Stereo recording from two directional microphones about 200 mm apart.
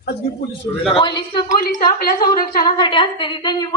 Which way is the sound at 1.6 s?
45° left (ahead or behind).